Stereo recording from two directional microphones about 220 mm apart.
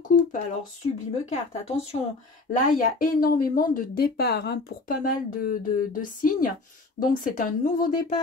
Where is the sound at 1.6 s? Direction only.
30° left (ahead or behind).